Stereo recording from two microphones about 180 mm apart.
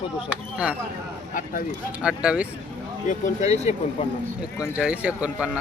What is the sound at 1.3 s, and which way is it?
Speech, 50° left (ahead or behind).